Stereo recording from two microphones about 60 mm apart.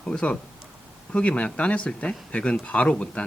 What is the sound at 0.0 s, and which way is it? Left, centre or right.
Speech, centre.